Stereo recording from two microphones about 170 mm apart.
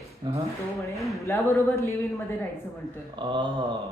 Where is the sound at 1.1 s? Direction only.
15° left (ahead or behind).